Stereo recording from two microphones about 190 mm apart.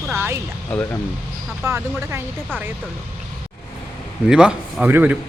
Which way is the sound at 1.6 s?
15° right (ahead or behind).